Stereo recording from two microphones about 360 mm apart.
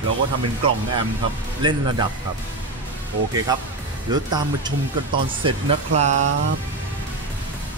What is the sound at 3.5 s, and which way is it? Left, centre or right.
Speech, centre.